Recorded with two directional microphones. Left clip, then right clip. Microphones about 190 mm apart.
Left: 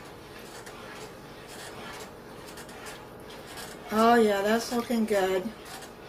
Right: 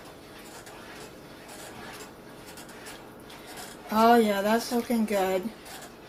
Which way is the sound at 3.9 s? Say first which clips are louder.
Right 1 dB; 40° right (ahead or behind).